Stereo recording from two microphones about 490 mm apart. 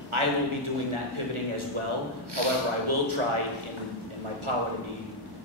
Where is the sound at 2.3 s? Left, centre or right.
Right.